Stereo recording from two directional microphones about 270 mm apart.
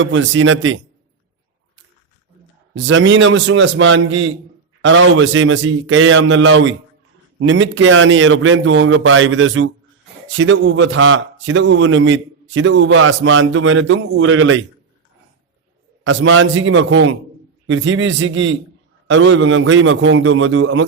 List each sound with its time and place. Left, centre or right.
0.0 s a man's voice: right
2.7 s a man's voice: right
16.0 s a man's voice: right